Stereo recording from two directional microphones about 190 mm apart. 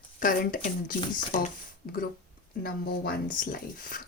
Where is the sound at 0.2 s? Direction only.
45° left (ahead or behind).